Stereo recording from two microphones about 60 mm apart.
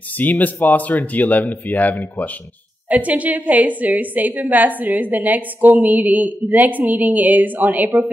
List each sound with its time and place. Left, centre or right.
0.2 s speech: left
2.9 s a woman's voice: right